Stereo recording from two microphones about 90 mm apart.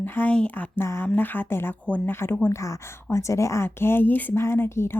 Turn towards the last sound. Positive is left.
turn(degrees=30)  # may be behind; listen again after turning